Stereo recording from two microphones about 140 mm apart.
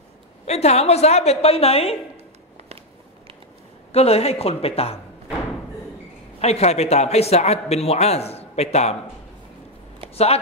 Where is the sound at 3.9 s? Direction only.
45° left (ahead or behind).